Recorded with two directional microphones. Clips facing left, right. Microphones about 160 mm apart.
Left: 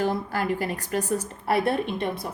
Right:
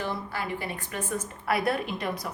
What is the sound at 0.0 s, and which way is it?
A woman's voice, 45° left (ahead or behind).